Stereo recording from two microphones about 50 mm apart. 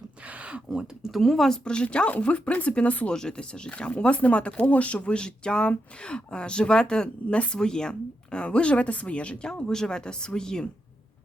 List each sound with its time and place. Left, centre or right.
0.3 s a sound: right
1.1 s speech: centre
1.6 s speech: centre
3.1 s speech: centre
9.6 s speech: centre